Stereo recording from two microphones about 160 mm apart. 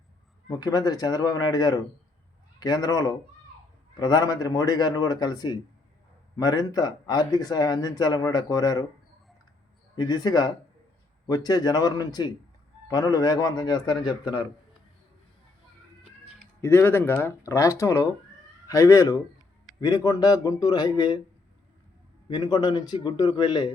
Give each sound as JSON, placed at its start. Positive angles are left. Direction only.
{"t": 0.4, "sound": "speech", "side_deg": 25}
{"t": 9.9, "sound": "speech", "side_deg": 25}
{"t": 16.6, "sound": "speech", "side_deg": 15}
{"t": 22.3, "sound": "speech", "side_deg": 25}